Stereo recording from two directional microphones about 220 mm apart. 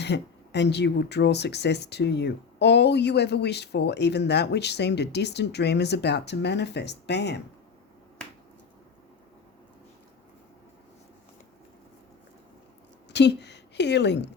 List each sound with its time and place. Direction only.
0.0 s speech: 50° left (ahead or behind)
13.1 s speech: 50° left (ahead or behind)